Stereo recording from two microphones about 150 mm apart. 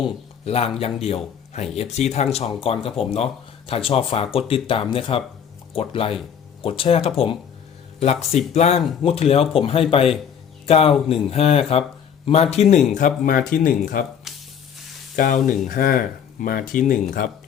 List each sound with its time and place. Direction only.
0.0 s speech: 40° left (ahead or behind); by 14.0 s 70° left (ahead or behind)
14.3 s sizzle: centre (ahead or behind)
15.1 s speech: 60° left (ahead or behind)